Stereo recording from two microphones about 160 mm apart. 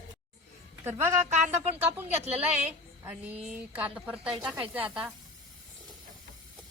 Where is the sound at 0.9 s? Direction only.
15° right (ahead or behind).